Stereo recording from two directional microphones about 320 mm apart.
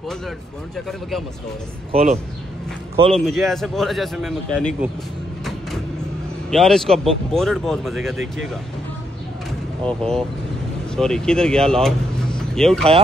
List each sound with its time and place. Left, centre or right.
0.7 s speech: centre
1.9 s speech: centre
3.1 s speech: centre
6.5 s speech: centre
9.8 s speech: centre